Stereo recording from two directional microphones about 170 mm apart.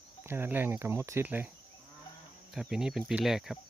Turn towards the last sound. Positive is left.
turn(degrees=0)  # may be behind; listen again after turning